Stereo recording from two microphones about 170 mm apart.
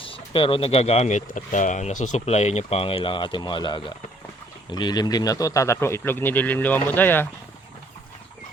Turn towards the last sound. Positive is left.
turn(degrees=10)  # may be behind; listen again after turning